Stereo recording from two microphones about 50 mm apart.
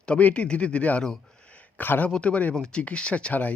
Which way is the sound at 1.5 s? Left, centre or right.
Left.